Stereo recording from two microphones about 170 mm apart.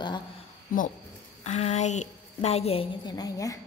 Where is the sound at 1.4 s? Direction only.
40° left (ahead or behind); by 3.5 s 20° left (ahead or behind).